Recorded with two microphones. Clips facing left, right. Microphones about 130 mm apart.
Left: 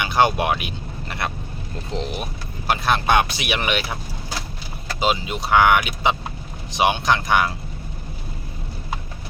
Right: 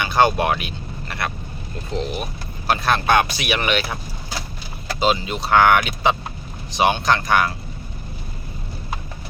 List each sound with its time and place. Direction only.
0.0 s speech: 15° left (ahead or behind)
4.9 s speech: 15° left (ahead or behind)